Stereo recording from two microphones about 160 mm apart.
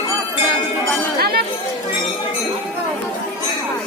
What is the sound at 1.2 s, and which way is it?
Speech, 70° right (ahead or behind).